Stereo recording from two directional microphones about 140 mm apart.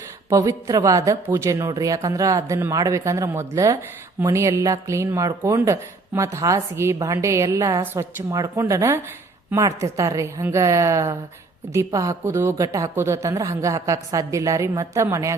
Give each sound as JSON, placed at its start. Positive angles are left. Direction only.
{"t": 0.3, "sound": "speech", "side_deg": -25}